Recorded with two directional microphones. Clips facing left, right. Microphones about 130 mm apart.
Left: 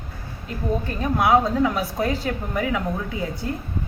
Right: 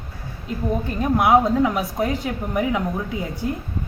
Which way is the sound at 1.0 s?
20° right (ahead or behind).